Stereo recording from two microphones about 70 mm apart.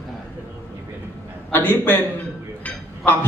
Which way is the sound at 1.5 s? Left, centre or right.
Left.